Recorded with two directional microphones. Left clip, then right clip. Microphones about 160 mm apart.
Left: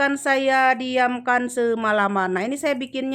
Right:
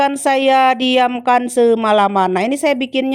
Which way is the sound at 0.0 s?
35° right (ahead or behind).